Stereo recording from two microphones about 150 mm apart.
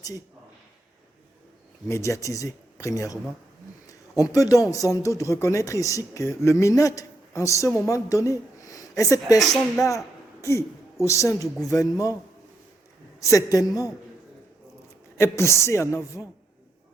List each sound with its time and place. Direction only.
1.9 s speech: 20° left (ahead or behind)
9.4 s speech: centre (ahead or behind)
11.0 s speech: 20° left (ahead or behind)
13.2 s speech: 20° left (ahead or behind)
15.2 s speech: 20° left (ahead or behind)